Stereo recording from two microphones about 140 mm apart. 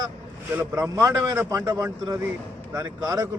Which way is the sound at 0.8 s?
25° right (ahead or behind).